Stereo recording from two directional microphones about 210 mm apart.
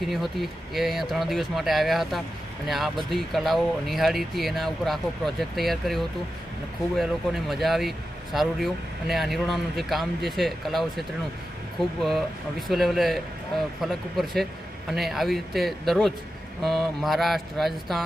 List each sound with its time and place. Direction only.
0.0 s speech: centre (ahead or behind)